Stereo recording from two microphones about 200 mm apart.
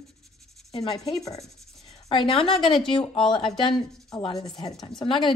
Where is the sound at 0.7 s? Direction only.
30° left (ahead or behind).